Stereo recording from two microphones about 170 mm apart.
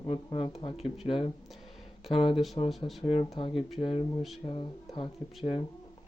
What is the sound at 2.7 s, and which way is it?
Speech, centre (ahead or behind).